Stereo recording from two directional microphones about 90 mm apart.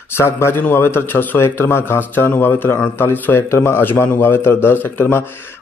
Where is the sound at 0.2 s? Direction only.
25° left (ahead or behind).